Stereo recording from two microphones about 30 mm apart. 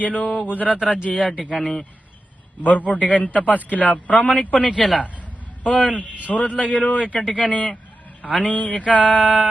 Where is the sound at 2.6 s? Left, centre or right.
Left.